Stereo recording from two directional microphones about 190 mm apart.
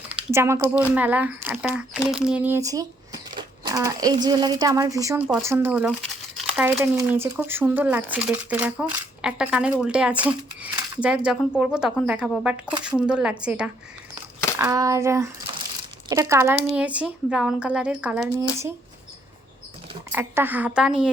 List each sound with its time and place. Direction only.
0.1 s speech: 15° right (ahead or behind)
14.6 s speech: 15° right (ahead or behind)
20.1 s speech: 10° right (ahead or behind)